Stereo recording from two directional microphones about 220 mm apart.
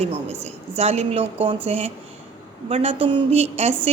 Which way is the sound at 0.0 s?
30° right (ahead or behind).